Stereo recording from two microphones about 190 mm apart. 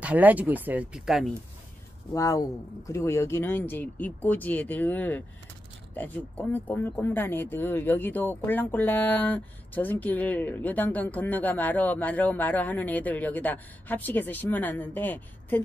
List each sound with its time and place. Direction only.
0.0 s speech: 10° right (ahead or behind)
2.1 s speech: 15° left (ahead or behind)